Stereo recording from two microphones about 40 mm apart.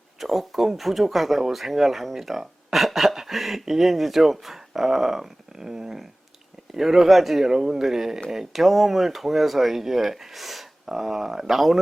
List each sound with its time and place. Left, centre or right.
0.2 s speech: centre